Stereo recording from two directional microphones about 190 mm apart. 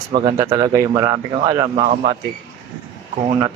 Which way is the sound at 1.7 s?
40° right (ahead or behind).